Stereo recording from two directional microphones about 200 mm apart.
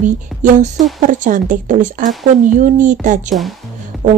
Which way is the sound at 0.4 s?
40° right (ahead or behind).